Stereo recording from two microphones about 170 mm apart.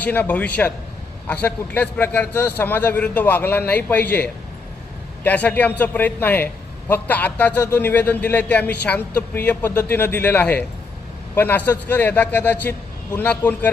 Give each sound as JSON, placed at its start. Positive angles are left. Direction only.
{"t": 0.0, "sound": "a man's voice", "side_deg": 10}